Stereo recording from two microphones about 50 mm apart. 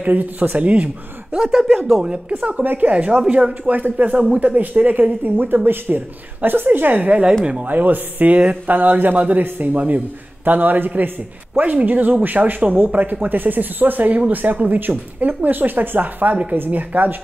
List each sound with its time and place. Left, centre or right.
0.0 s speech: right
1.4 s speech: centre
2.0 s a woman's voice: centre
2.6 s speech: right
2.9 s speech: right
7.6 s speech: right
8.7 s speech: right